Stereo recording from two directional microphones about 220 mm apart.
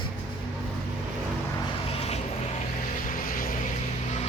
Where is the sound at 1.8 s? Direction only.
25° left (ahead or behind).